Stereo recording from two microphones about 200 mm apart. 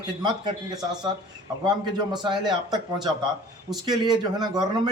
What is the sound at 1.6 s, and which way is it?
A man's voice, 25° right (ahead or behind).